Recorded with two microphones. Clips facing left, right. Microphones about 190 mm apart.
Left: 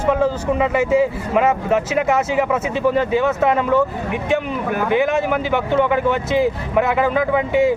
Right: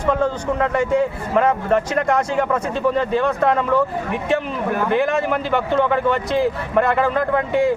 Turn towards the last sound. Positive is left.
turn(degrees=5)  # may be behind; listen again after turning